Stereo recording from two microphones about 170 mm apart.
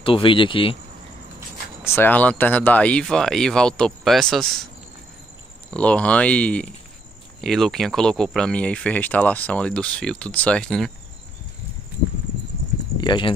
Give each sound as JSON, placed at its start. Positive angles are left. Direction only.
{"t": 0.0, "sound": "speech", "side_deg": 30}
{"t": 1.9, "sound": "speech", "side_deg": 10}
{"t": 5.7, "sound": "speech", "side_deg": 5}
{"t": 13.0, "sound": "speech", "side_deg": 25}